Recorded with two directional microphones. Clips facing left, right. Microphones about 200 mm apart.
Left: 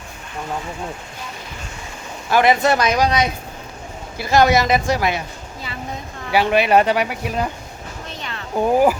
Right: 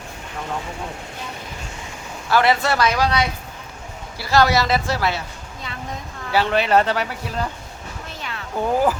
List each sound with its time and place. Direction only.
2.3 s speech: 15° left (ahead or behind)
6.3 s speech: 15° left (ahead or behind)
8.2 s a sound: 5° right (ahead or behind)
8.5 s speech: 15° left (ahead or behind)